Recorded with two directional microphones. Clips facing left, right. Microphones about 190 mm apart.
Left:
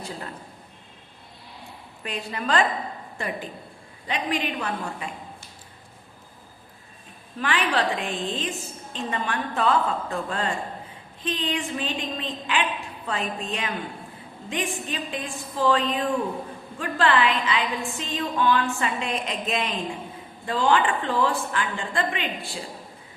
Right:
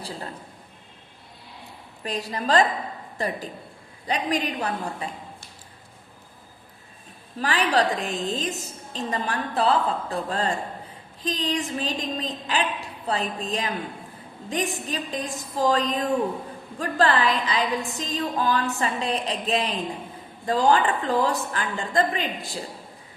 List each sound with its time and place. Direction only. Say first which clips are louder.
2.0 s a woman's voice: right 2 dB; 35° right (ahead or behind)
7.3 s a woman's voice: right 2 dB; 35° right (ahead or behind)